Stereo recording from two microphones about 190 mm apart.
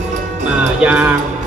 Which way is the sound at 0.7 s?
5° right (ahead or behind).